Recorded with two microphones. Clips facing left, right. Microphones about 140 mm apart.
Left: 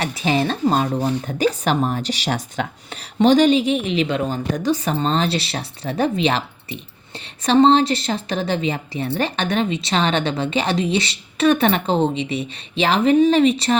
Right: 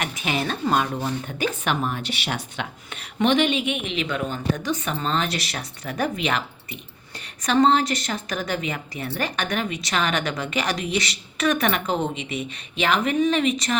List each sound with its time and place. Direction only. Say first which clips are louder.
0.0 s a woman's voice: left 6 dB; 35° left (ahead or behind)